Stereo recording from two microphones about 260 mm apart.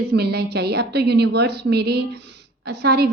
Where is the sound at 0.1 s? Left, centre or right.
Right.